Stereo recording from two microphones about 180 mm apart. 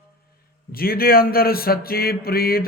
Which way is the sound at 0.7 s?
55° left (ahead or behind).